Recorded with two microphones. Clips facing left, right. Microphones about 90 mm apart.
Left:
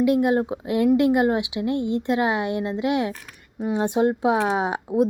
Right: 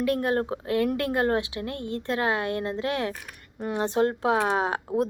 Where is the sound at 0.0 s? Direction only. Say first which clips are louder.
Left 5 dB; 15° left (ahead or behind).